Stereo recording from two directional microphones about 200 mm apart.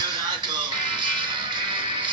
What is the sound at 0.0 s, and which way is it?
Music, 20° right (ahead or behind).